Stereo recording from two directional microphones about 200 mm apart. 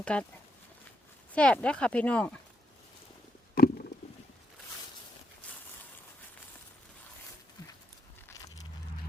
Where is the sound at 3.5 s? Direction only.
50° left (ahead or behind).